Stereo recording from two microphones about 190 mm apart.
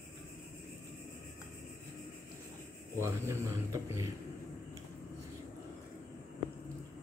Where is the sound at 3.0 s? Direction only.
15° right (ahead or behind).